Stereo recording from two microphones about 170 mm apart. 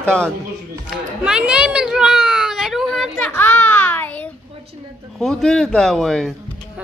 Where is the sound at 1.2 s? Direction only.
5° right (ahead or behind); by 4.1 s 10° left (ahead or behind).